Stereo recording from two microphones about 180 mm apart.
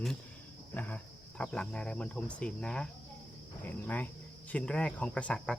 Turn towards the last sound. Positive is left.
turn(degrees=5)  # may be behind; listen again after turning